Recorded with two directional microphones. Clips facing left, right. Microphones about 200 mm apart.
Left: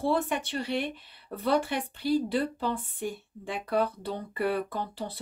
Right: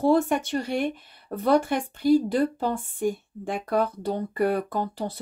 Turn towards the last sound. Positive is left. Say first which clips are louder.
# right 6 dB
turn(degrees=-45)  # may be behind; listen again after turning